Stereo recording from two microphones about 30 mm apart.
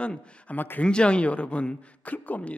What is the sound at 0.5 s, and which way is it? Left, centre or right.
Speech, left.